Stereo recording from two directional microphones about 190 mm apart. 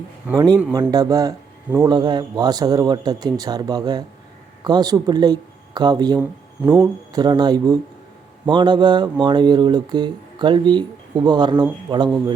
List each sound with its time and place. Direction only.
0.3 s speech: 15° right (ahead or behind)